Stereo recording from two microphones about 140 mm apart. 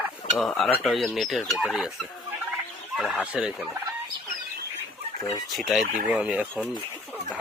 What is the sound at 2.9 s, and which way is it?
Turkey, centre (ahead or behind).